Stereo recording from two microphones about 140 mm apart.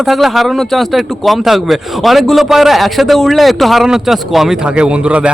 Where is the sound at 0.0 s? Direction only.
Centre (ahead or behind).